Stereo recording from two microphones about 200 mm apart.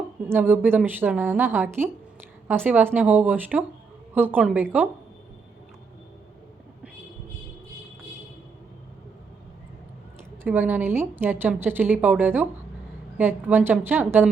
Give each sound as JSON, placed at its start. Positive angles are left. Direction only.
{"t": 0.3, "sound": "a woman's voice", "side_deg": -10}
{"t": 10.4, "sound": "a woman's voice", "side_deg": -10}